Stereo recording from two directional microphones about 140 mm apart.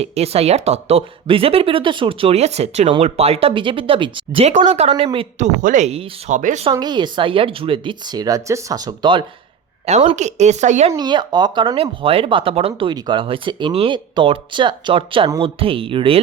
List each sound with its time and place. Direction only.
0.0 s speech: 45° right (ahead or behind)
4.4 s speech: 50° right (ahead or behind)
5.4 s speech: 60° right (ahead or behind)
6.7 s speech: 30° right (ahead or behind)
9.8 s speech: 50° right (ahead or behind)
10.9 s speech: 30° right (ahead or behind)